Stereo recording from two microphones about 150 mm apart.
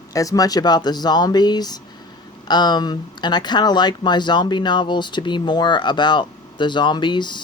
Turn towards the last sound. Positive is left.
turn(degrees=30)  # may be behind; listen again after turning